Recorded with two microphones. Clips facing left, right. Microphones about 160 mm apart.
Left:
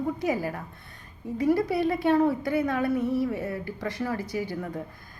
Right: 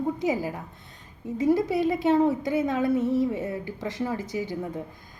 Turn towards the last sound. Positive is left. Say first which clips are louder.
# right 1 dB
turn(degrees=-20)  # may be behind; listen again after turning